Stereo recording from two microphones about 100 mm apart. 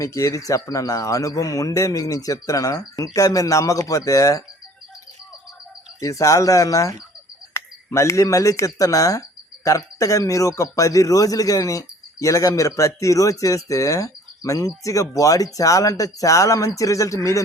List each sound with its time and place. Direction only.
0.0 s a man's voice: 30° left (ahead or behind)
6.0 s a man's voice: 35° left (ahead or behind)